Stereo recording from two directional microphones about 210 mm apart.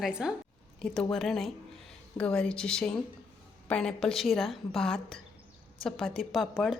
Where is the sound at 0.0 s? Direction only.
5° right (ahead or behind).